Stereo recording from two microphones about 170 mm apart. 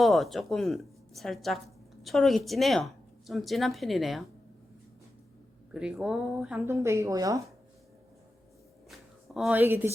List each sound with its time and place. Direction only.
0.0 s a woman's voice: centre (ahead or behind)
5.7 s speech: 5° right (ahead or behind)
6.7 s speech: 15° right (ahead or behind)
8.9 s a sound: centre (ahead or behind)